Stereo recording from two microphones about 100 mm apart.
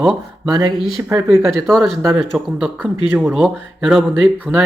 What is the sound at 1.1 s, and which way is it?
Speech, 25° right (ahead or behind).